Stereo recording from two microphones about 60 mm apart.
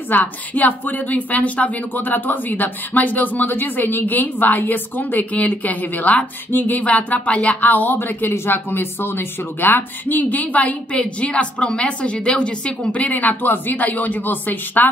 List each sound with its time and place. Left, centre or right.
0.1 s speech: left